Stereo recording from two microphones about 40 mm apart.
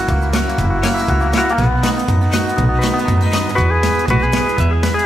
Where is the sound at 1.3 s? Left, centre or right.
Centre.